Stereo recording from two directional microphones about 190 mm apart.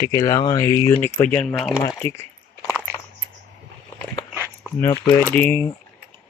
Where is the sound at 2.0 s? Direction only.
30° right (ahead or behind).